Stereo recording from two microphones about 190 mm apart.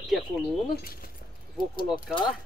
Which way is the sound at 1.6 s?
50° left (ahead or behind).